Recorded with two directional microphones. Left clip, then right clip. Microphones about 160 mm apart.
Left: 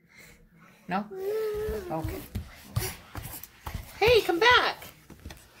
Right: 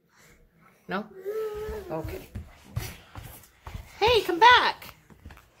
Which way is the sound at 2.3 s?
50° left (ahead or behind).